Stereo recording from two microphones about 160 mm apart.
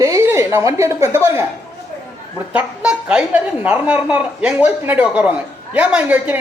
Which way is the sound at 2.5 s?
10° right (ahead or behind).